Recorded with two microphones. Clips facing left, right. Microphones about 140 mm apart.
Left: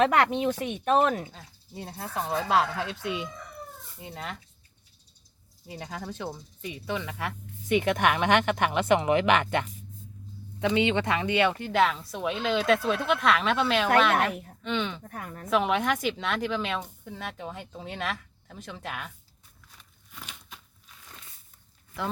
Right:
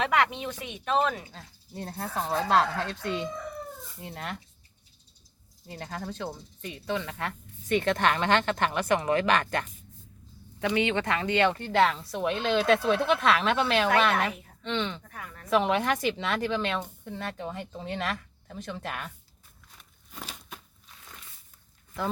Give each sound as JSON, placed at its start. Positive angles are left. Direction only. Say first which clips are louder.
{"t": 0.0, "sound": "speech", "louder": "left 4 dB", "side_deg": 45}
{"t": 1.3, "sound": "speech", "louder": "right 1 dB", "side_deg": 5}
{"t": 5.6, "sound": "speech", "louder": "even", "side_deg": 5}
{"t": 15.0, "sound": "speech", "louder": "left 5 dB", "side_deg": 40}
{"t": 15.4, "sound": "speech", "louder": "even", "side_deg": 0}
{"t": 20.1, "sound": "a sound", "louder": "right 4 dB", "side_deg": -40}